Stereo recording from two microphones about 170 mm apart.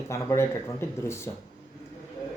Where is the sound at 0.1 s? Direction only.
15° left (ahead or behind).